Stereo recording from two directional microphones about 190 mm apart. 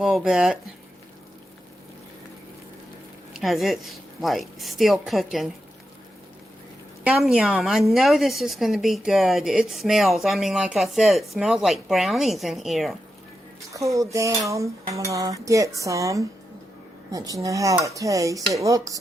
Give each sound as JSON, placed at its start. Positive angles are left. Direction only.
{"t": 0.0, "sound": "a woman's voice", "side_deg": 0}
{"t": 3.3, "sound": "a woman's voice", "side_deg": 0}
{"t": 7.0, "sound": "a woman's voice", "side_deg": 0}
{"t": 13.7, "sound": "cutlery", "side_deg": -15}